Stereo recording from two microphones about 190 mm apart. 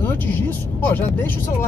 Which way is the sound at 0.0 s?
10° left (ahead or behind).